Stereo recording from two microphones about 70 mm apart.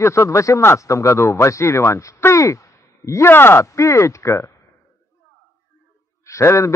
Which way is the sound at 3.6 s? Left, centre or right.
Left.